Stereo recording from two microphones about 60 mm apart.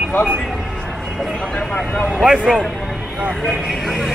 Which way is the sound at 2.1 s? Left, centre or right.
Centre.